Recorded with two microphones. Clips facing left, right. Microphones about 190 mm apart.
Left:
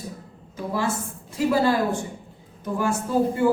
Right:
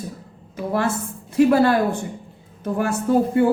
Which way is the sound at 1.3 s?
60° right (ahead or behind).